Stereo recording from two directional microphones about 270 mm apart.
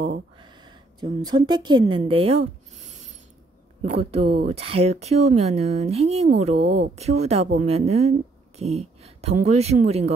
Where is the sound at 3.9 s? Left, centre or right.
Right.